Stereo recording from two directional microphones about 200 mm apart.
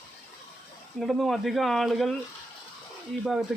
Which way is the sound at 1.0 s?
Centre (ahead or behind).